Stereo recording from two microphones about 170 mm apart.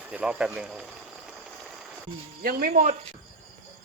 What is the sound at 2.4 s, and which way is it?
Speech, 60° right (ahead or behind).